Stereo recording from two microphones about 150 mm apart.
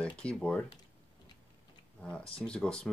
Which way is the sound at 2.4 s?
5° left (ahead or behind).